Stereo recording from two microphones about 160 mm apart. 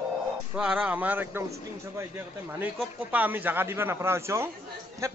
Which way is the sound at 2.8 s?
10° right (ahead or behind).